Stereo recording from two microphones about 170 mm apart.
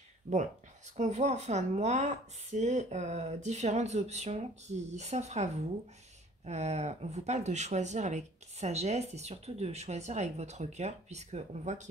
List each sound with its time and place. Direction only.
0.3 s speech: 50° right (ahead or behind)